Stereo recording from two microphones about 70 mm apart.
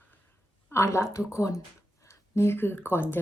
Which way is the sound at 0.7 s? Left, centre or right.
Left.